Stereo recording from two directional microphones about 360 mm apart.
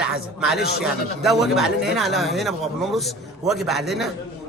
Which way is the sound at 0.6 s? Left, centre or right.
Left.